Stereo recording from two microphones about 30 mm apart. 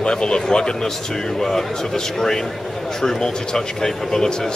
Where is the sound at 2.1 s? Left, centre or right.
Centre.